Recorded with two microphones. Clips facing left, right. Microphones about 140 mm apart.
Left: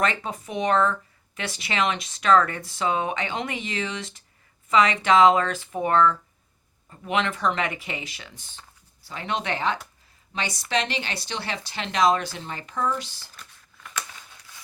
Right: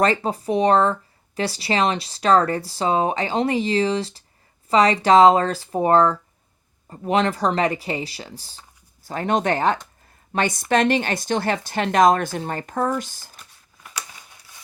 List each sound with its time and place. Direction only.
0.0 s speech: 35° right (ahead or behind)
9.0 s speech: 45° right (ahead or behind)
13.4 s a sound: 15° right (ahead or behind)